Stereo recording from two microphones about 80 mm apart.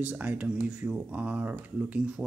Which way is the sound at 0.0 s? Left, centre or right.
Right.